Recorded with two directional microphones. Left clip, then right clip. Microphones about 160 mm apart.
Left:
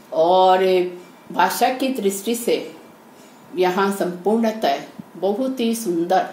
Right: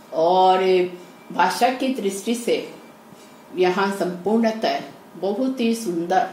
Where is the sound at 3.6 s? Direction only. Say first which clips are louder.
Left 1 dB; 45° left (ahead or behind).